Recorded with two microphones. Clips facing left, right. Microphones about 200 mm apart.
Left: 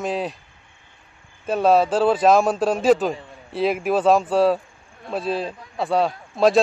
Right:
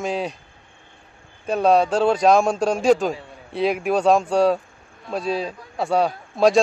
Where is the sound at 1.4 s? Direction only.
5° left (ahead or behind).